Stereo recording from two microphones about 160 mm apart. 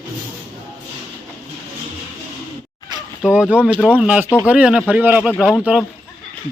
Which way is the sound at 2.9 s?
25° right (ahead or behind).